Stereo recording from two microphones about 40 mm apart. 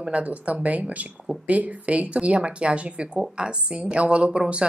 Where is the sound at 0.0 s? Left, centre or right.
Right.